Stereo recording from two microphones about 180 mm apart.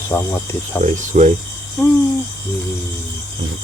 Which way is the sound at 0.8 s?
40° right (ahead or behind).